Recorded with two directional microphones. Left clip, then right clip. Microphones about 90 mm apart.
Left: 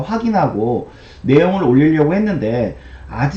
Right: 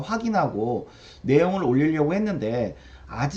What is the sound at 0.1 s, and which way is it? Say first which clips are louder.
Speech: left 7 dB; 20° right (ahead or behind).